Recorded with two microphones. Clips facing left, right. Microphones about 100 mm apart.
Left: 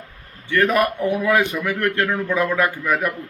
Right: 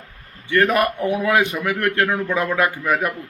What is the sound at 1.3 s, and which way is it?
A man's voice, 20° right (ahead or behind).